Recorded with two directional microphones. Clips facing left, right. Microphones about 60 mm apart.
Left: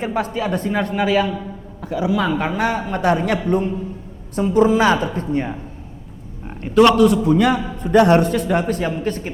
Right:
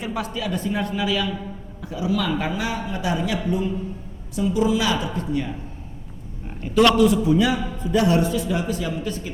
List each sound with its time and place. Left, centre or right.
0.0 s a man's voice: left
6.9 s a man's voice: left